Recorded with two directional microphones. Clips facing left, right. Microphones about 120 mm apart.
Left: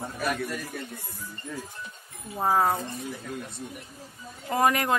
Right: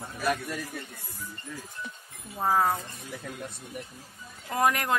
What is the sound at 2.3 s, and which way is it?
Speech, 15° left (ahead or behind).